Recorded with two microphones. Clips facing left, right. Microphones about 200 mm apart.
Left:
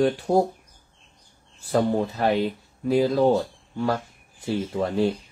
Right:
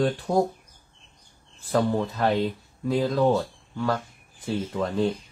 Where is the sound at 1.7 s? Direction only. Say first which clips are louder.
Left 2 dB; 20° left (ahead or behind).